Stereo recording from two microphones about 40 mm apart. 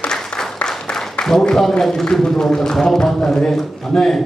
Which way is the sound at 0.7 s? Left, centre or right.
Centre.